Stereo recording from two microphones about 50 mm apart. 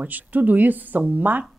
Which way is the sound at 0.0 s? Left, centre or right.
Right.